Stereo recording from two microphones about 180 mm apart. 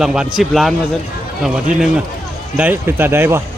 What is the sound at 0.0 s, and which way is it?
Speech, 5° right (ahead or behind).